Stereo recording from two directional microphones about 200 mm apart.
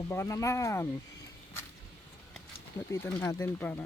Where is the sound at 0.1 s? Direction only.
15° left (ahead or behind).